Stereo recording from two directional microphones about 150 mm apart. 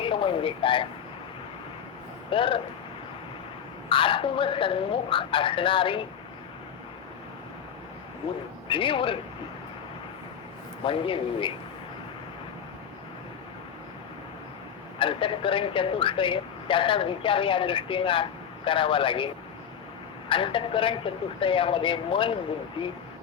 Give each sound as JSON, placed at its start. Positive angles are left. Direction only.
{"t": 0.0, "sound": "speech", "side_deg": 35}
{"t": 2.3, "sound": "a man's voice", "side_deg": 35}
{"t": 3.8, "sound": "a man's voice", "side_deg": 35}
{"t": 8.7, "sound": "a man's voice", "side_deg": 35}
{"t": 10.8, "sound": "a man's voice", "side_deg": 35}
{"t": 14.9, "sound": "a man's voice", "side_deg": 35}
{"t": 20.3, "sound": "a man's voice", "side_deg": 35}